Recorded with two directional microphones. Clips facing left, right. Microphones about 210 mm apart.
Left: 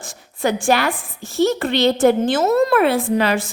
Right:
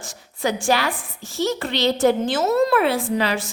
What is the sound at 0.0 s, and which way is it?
A woman's voice, 55° left (ahead or behind).